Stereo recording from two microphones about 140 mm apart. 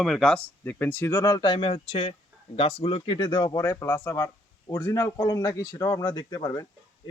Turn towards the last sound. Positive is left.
turn(degrees=30)  # may be behind; listen again after turning